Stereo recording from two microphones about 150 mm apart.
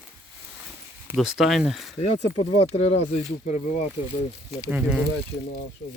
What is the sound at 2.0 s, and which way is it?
Speech, 40° left (ahead or behind).